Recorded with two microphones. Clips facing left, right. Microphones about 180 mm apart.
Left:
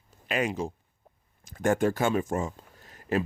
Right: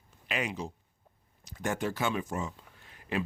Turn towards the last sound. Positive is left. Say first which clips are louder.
# left 5 dB
turn(degrees=45)  # may be behind; listen again after turning